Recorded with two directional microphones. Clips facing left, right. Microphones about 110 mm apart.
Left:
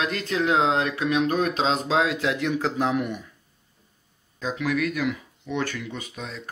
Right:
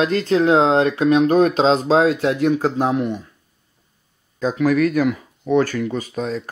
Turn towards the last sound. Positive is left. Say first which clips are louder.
# right 12 dB
turn(degrees=-45)  # may be behind; listen again after turning